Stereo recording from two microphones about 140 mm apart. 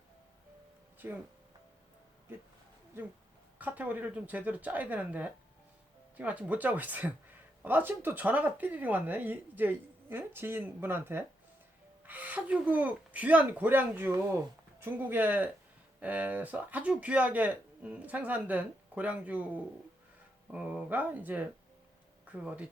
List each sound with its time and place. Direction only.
1.0 s speech: 20° right (ahead or behind)
3.6 s speech: 10° right (ahead or behind)
20.5 s speech: 10° right (ahead or behind)